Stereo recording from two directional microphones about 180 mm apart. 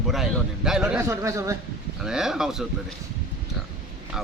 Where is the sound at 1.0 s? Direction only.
15° right (ahead or behind).